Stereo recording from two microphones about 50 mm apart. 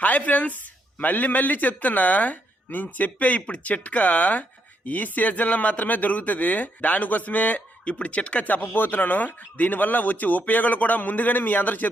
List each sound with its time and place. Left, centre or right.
0.0 s speech: left
8.6 s speech: left